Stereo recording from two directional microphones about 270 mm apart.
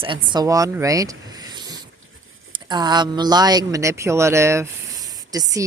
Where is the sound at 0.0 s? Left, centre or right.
Centre.